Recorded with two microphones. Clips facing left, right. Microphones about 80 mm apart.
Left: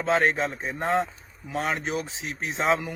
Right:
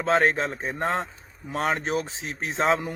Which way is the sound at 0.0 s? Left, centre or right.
Right.